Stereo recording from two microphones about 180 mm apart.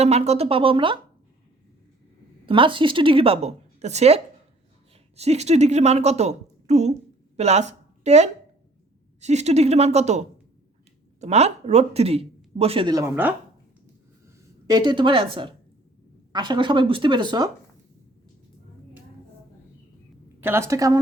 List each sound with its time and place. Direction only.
0.0 s a woman's voice: 35° right (ahead or behind)
2.5 s a woman's voice: 30° right (ahead or behind)
13.1 s a woman's voice: 10° right (ahead or behind)
14.3 s speech: 20° right (ahead or behind)
20.4 s a woman's voice: 15° right (ahead or behind)